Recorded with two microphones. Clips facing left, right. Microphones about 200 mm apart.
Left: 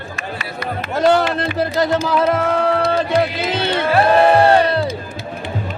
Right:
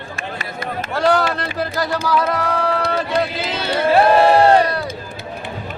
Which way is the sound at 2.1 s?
25° left (ahead or behind).